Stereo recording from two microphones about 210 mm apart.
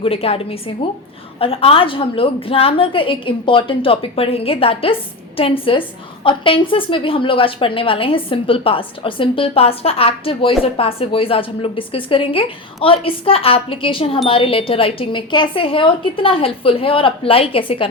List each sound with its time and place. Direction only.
0.0 s a woman's voice: 30° left (ahead or behind)